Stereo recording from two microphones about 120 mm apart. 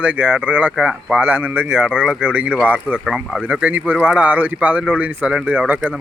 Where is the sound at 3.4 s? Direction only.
10° right (ahead or behind).